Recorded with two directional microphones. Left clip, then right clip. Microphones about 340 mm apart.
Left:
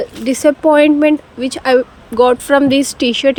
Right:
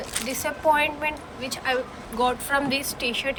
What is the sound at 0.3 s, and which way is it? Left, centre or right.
Speech, centre.